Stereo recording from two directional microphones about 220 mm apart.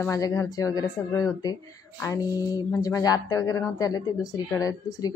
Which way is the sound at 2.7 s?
15° left (ahead or behind).